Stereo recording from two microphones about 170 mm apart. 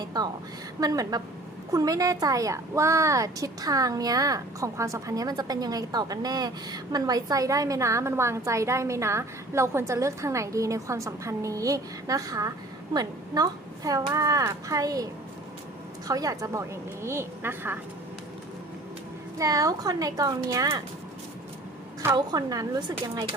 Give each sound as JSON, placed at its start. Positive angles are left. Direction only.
{"t": 0.0, "sound": "a woman's voice", "side_deg": -25}
{"t": 16.0, "sound": "a woman's voice", "side_deg": -20}
{"t": 19.4, "sound": "a woman's voice", "side_deg": -20}
{"t": 22.0, "sound": "a woman's voice", "side_deg": -25}